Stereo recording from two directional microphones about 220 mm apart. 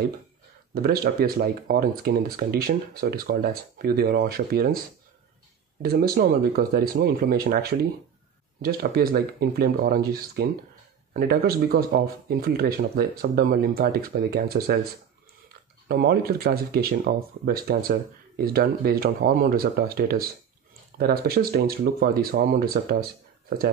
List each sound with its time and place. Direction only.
0.8 s speech: 45° right (ahead or behind)
5.8 s speech: 45° right (ahead or behind)
8.6 s speech: 45° right (ahead or behind)
15.9 s speech: 45° right (ahead or behind)